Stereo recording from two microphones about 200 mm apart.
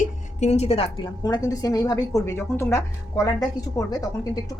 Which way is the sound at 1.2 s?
20° left (ahead or behind).